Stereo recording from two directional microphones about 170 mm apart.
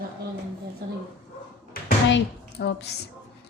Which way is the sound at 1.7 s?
65° left (ahead or behind).